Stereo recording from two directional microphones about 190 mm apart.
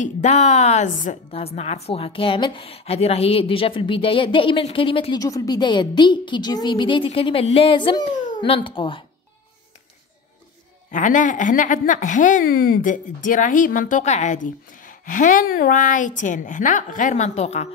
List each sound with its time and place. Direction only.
0.0 s a woman's voice: 40° left (ahead or behind)
10.9 s a woman's voice: 40° left (ahead or behind)